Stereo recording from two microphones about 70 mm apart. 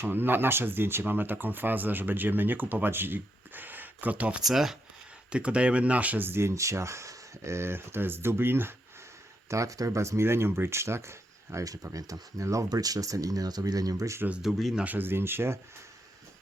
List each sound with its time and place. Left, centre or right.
0.0 s speech: right
4.4 s speech: centre
5.3 s speech: centre; by 8.7 s right
9.5 s speech: right
12.6 s speech: right
14.4 s speech: centre
14.8 s speech: right